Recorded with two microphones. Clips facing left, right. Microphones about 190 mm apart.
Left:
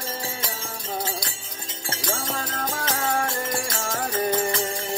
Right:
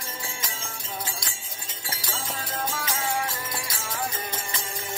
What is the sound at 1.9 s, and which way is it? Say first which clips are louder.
Music: left 6 dB; 45° left (ahead or behind).